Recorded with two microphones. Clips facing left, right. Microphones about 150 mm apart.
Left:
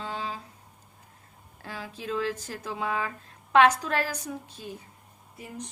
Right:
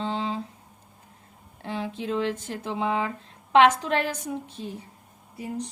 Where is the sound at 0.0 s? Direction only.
25° right (ahead or behind).